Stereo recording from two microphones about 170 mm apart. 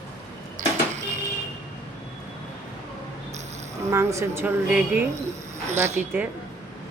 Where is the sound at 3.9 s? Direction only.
15° right (ahead or behind).